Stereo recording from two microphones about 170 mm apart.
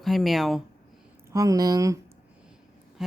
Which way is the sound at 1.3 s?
20° right (ahead or behind).